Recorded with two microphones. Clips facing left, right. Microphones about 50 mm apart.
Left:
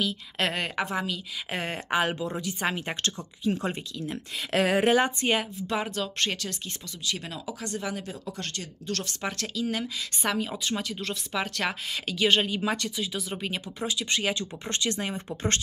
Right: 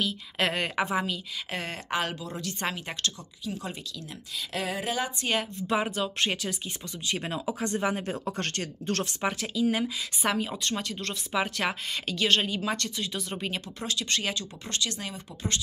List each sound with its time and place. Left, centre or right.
0.0 s a woman's voice: centre
1.5 s speech: centre; by 3.7 s left
4.5 s speech: left
5.3 s a woman's voice: centre
5.7 s speech: centre
7.1 s speech: right
8.1 s speech: right
9.0 s a woman's voice: centre
12.2 s speech: centre
14.4 s speech: left